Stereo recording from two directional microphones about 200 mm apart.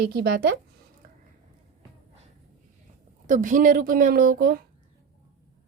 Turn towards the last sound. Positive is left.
turn(degrees=-45)  # may be behind; listen again after turning